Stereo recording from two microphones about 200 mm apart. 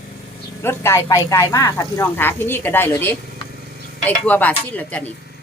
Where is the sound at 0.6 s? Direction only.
10° left (ahead or behind).